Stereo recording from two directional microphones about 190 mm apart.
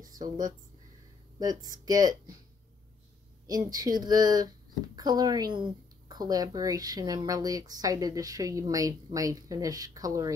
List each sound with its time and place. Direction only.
1.4 s speech: 20° right (ahead or behind)
3.4 s speech: 20° right (ahead or behind)